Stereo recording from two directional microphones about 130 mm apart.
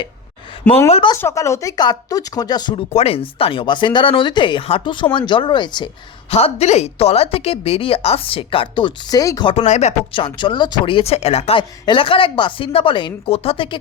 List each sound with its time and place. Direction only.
1.1 s speech: 25° left (ahead or behind)
2.9 s speech: 50° left (ahead or behind)
6.3 s a woman's voice: 55° left (ahead or behind); by 9.5 s 25° left (ahead or behind)
9.6 s speech: 60° left (ahead or behind)
10.1 s a woman's voice: 40° left (ahead or behind)